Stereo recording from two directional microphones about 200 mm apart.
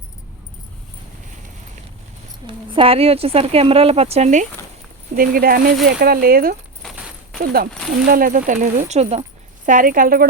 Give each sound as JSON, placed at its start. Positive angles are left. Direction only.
{"t": 2.4, "sound": "speech", "side_deg": -15}
{"t": 2.7, "sound": "speech", "side_deg": -30}
{"t": 5.1, "sound": "speech", "side_deg": -45}
{"t": 6.8, "sound": "a sound", "side_deg": 5}
{"t": 7.4, "sound": "speech", "side_deg": -50}
{"t": 9.6, "sound": "speech", "side_deg": -40}